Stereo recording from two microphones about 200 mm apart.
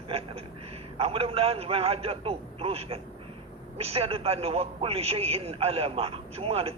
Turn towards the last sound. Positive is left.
turn(degrees=-30)  # may be behind; listen again after turning